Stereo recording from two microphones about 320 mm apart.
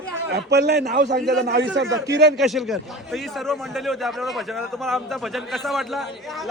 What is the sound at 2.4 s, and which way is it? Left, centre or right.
A man's voice, centre.